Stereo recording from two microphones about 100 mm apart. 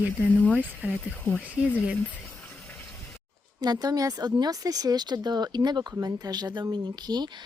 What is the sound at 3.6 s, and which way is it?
Speech, 45° right (ahead or behind).